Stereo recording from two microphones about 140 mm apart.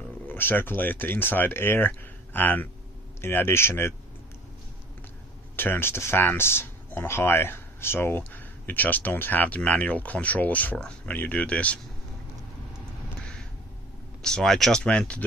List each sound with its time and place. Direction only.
0.3 s speech: 15° left (ahead or behind)
5.6 s speech: 15° left (ahead or behind)
14.2 s speech: 5° left (ahead or behind)